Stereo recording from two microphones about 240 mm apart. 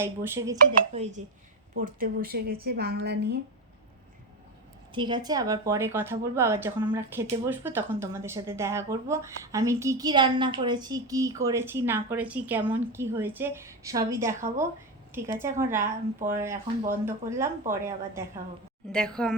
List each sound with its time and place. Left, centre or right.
0.0 s a woman's voice: centre
1.7 s speech: right
4.9 s a woman's voice: centre
18.9 s a woman's voice: centre